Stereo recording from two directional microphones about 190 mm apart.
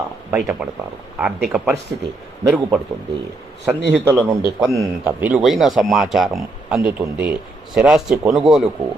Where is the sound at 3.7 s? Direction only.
10° right (ahead or behind).